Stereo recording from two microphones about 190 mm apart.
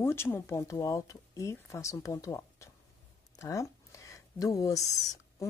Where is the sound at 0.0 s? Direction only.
15° left (ahead or behind).